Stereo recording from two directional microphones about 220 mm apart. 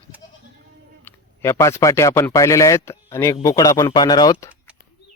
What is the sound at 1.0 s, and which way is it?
A man's voice, 10° left (ahead or behind).